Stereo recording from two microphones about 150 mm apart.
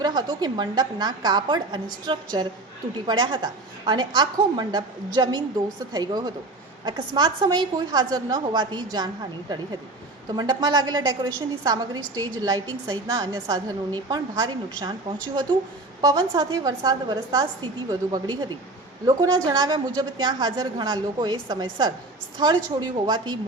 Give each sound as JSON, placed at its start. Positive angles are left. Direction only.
{"t": 0.0, "sound": "a woman's voice", "side_deg": -30}
{"t": 10.2, "sound": "a woman's voice", "side_deg": -25}
{"t": 16.0, "sound": "a woman's voice", "side_deg": -25}